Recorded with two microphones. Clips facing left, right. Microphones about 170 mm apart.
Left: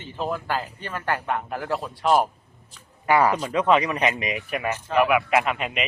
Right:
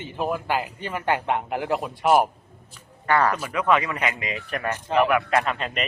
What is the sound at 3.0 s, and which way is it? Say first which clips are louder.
A man's voice: left 2 dB; 10° left (ahead or behind).